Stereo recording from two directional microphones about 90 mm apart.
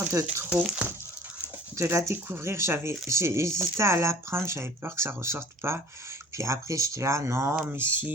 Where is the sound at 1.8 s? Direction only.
30° right (ahead or behind).